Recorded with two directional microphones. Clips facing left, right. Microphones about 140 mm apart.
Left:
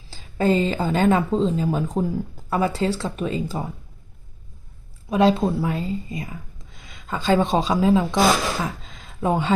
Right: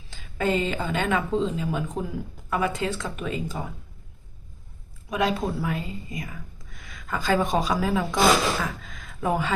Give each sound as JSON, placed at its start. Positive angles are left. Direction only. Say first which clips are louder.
{"t": 0.1, "sound": "speech", "louder": "left 5 dB", "side_deg": 35}
{"t": 5.0, "sound": "speech", "louder": "left 7 dB", "side_deg": 30}